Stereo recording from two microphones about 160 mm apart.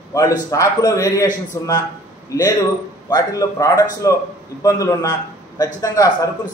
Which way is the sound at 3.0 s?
20° left (ahead or behind).